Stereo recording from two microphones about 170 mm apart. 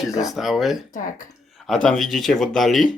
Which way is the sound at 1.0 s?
55° left (ahead or behind).